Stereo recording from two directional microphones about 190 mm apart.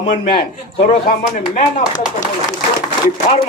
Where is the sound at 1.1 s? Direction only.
45° left (ahead or behind).